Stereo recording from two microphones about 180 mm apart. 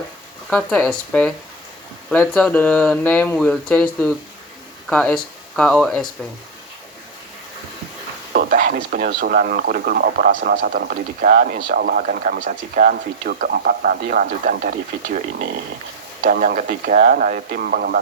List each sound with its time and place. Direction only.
0.5 s speech: 10° left (ahead or behind)
8.3 s speech: 50° right (ahead or behind)